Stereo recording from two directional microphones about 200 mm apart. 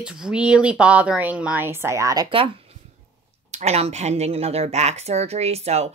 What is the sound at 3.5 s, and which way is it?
Speech, 35° right (ahead or behind).